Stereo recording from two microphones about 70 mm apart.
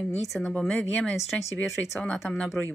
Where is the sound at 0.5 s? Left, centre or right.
Centre.